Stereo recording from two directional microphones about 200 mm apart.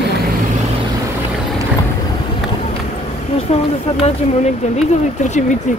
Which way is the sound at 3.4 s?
30° left (ahead or behind).